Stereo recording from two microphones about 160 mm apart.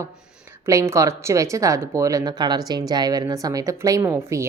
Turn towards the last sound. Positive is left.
turn(degrees=-20)  # may be behind; listen again after turning